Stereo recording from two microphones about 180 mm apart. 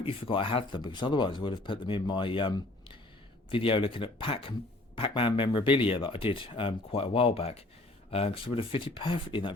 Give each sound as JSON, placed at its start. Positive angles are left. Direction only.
{"t": 0.0, "sound": "speech", "side_deg": 30}